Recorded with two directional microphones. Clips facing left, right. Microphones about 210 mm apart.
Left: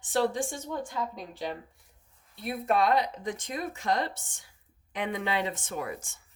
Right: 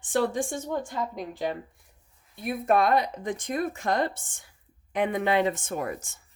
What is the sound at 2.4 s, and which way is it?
A woman's voice, 50° right (ahead or behind).